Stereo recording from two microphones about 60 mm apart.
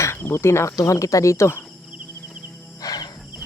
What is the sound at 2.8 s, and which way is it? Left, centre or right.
Cricket, left.